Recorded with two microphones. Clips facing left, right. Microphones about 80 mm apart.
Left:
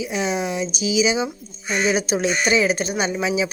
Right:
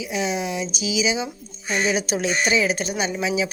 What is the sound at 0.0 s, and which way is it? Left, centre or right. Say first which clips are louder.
Speech: left 2 dB; left.